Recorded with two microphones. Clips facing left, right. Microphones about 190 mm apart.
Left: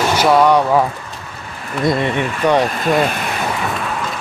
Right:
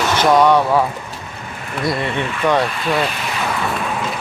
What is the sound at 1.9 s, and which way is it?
Speech, 20° left (ahead or behind).